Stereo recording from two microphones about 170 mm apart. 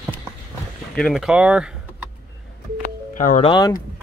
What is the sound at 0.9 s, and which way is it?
Speech, centre (ahead or behind).